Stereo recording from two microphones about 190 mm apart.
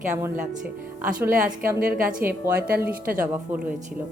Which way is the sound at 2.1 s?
45° right (ahead or behind).